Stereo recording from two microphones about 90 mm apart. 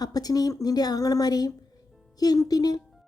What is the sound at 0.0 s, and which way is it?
A woman's voice, 45° left (ahead or behind).